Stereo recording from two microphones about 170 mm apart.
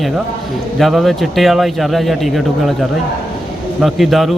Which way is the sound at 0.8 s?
Centre (ahead or behind).